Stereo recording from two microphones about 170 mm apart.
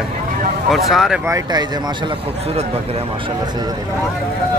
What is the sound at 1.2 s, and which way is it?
Speech, 20° right (ahead or behind).